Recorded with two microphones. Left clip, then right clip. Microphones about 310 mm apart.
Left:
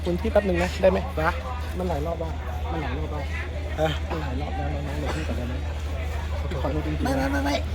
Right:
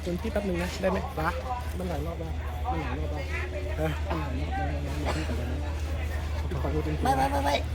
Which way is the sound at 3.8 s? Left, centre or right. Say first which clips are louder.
Left 7 dB; centre.